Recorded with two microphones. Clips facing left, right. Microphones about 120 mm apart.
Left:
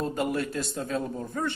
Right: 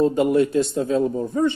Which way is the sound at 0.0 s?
20° right (ahead or behind).